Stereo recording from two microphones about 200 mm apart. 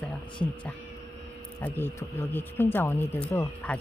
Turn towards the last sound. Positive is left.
turn(degrees=5)  # may be behind; listen again after turning